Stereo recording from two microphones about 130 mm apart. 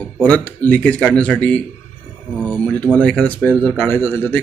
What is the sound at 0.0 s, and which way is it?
A man's voice, 10° left (ahead or behind).